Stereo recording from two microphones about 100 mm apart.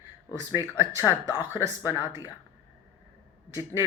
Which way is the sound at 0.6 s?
30° right (ahead or behind).